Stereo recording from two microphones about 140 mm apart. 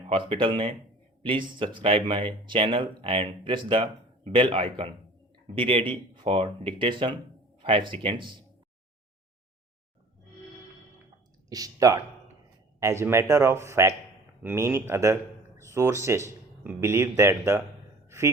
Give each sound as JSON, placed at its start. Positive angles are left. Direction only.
{"t": 0.1, "sound": "speech", "side_deg": -40}
{"t": 11.4, "sound": "a man's voice", "side_deg": -25}